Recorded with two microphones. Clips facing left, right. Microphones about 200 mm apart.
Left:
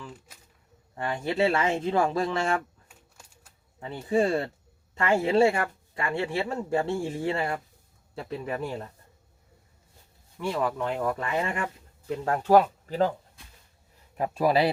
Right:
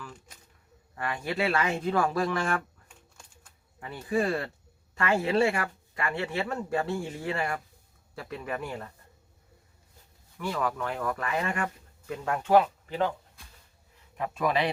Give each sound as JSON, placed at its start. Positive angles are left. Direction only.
{"t": 0.9, "sound": "speech", "side_deg": 25}
{"t": 2.9, "sound": "typewriter", "side_deg": 10}
{"t": 4.1, "sound": "speech", "side_deg": 25}
{"t": 10.3, "sound": "speech", "side_deg": 25}
{"t": 14.2, "sound": "a man's voice", "side_deg": 35}